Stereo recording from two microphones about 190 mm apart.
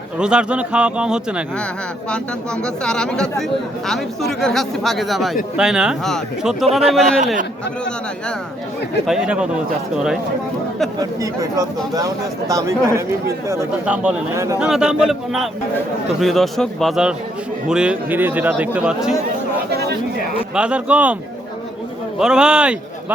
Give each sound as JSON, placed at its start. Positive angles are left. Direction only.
{"t": 0.2, "sound": "speech", "side_deg": -5}
{"t": 2.8, "sound": "speech", "side_deg": 5}
{"t": 9.0, "sound": "speech", "side_deg": -5}
{"t": 11.0, "sound": "speech", "side_deg": -20}
{"t": 14.6, "sound": "speech", "side_deg": -5}
{"t": 20.6, "sound": "speech", "side_deg": -5}
{"t": 22.2, "sound": "speech", "side_deg": -5}